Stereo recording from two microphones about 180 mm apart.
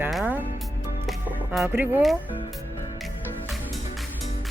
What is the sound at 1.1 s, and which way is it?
Music, centre (ahead or behind).